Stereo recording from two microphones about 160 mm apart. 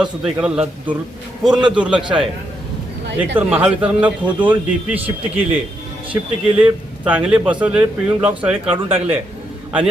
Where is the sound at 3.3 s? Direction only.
10° right (ahead or behind).